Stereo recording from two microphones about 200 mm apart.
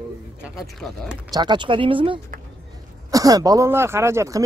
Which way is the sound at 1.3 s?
20° right (ahead or behind).